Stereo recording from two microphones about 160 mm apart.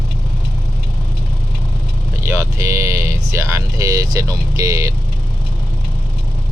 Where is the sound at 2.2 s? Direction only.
20° right (ahead or behind).